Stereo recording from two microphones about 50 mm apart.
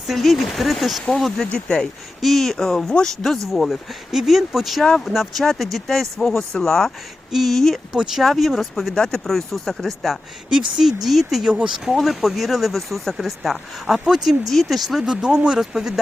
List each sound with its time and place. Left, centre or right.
0.1 s speech: centre
1.5 s speech: centre
2.2 s speech: centre
4.8 s speech: centre
5.0 s speech: centre
7.3 s speech: centre
7.5 s speech: centre
10.8 s speech: centre
15.0 s speech: centre